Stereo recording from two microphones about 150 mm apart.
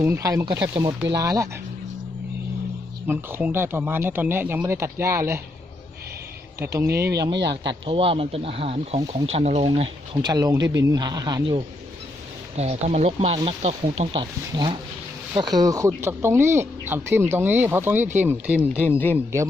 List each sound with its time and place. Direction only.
0.0 s speech: 20° right (ahead or behind)
3.1 s speech: 10° right (ahead or behind)
6.9 s speech: 90° right
7.2 s speech: 30° right (ahead or behind); by 9.6 s 45° right (ahead or behind)
10.2 s speech: 25° right (ahead or behind)
12.5 s speech: 45° right (ahead or behind); by 18.9 s 10° right (ahead or behind)
18.9 s speech: 15° left (ahead or behind)